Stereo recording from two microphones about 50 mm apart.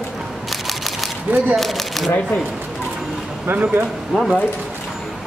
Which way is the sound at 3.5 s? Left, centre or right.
Right.